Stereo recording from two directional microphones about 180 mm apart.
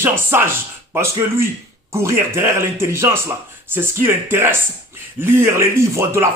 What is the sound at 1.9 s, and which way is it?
Speech, 15° right (ahead or behind).